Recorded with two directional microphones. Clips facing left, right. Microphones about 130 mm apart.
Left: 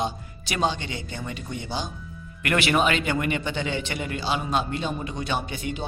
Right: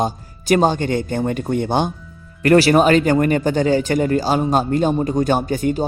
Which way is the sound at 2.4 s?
35° right (ahead or behind).